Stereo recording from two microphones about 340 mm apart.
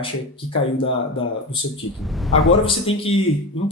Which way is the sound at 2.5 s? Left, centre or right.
Centre.